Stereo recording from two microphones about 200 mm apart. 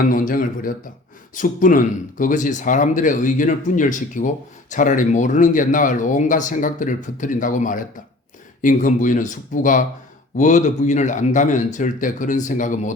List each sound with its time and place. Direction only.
0.0 s speech: 40° left (ahead or behind)